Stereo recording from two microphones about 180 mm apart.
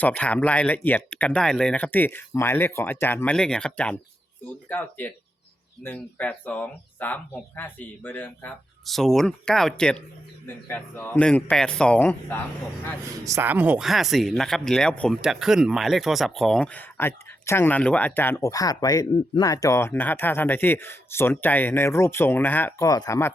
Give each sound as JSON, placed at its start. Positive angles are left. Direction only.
{"t": 0.0, "sound": "speech", "side_deg": 5}
{"t": 13.2, "sound": "speech", "side_deg": -15}